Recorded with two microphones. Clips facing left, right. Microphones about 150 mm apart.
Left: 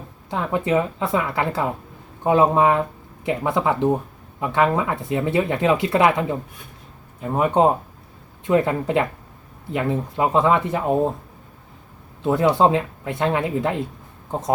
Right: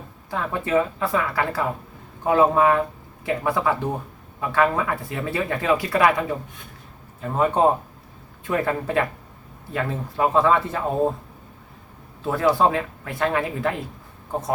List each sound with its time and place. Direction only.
0.3 s speech: 20° left (ahead or behind)
12.2 s speech: 20° left (ahead or behind)